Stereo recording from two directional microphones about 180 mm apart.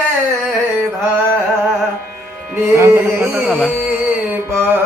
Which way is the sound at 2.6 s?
15° right (ahead or behind).